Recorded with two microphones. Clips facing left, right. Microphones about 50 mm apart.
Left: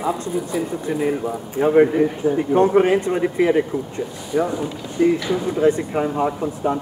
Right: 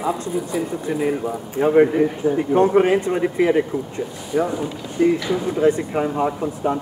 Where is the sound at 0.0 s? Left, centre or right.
Centre.